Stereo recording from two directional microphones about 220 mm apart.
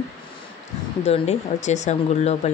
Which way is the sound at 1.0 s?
30° left (ahead or behind).